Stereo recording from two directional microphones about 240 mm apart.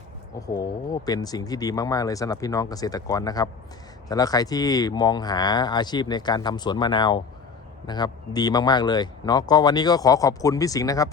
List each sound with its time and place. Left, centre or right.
0.3 s speech: centre